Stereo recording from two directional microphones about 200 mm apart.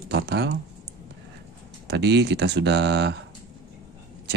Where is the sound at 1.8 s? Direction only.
60° right (ahead or behind).